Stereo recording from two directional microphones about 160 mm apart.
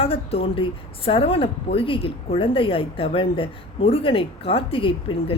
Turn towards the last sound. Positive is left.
turn(degrees=35)  # may be behind; listen again after turning